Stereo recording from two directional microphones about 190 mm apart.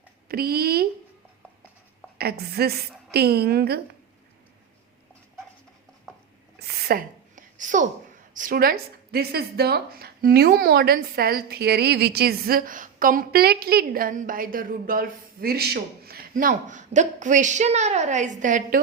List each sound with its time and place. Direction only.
0.3 s a woman's voice: 55° right (ahead or behind)
2.1 s a woman's voice: 55° right (ahead or behind)
6.6 s a sound: 55° right (ahead or behind)
8.3 s a woman's voice: 45° right (ahead or behind)